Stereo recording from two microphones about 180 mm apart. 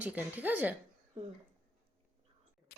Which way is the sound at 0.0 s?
10° right (ahead or behind).